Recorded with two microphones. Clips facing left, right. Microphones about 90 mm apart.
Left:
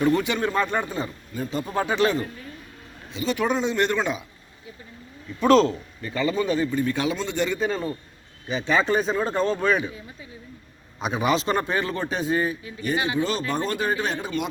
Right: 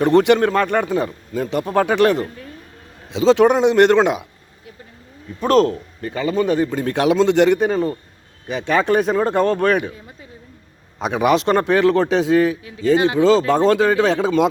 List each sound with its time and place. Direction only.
0.0 s speech: 75° right (ahead or behind)
3.1 s speech: 90° right; by 4.7 s 65° right (ahead or behind)
5.4 s a man's voice: 50° right (ahead or behind)
11.0 s a man's voice: 65° right (ahead or behind); by 14.5 s 90° right